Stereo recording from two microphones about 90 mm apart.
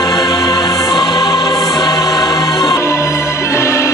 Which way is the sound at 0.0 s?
45° left (ahead or behind).